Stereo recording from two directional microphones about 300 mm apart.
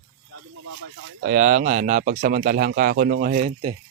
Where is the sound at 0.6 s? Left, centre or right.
Right.